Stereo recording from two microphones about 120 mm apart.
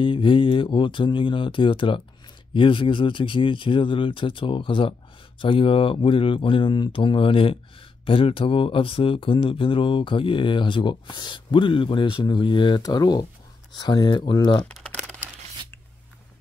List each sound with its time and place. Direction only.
0.0 s speech: 45° left (ahead or behind)
14.7 s crumpling: 10° left (ahead or behind)